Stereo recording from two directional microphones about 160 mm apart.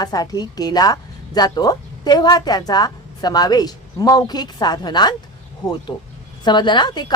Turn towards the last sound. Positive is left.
turn(degrees=25)  # may be behind; listen again after turning